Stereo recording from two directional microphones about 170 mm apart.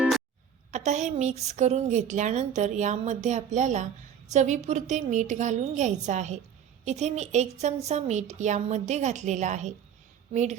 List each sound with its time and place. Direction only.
0.7 s a woman's voice: 45° right (ahead or behind)